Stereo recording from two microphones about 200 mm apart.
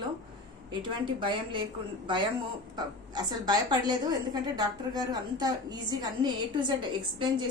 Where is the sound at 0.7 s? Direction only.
25° right (ahead or behind).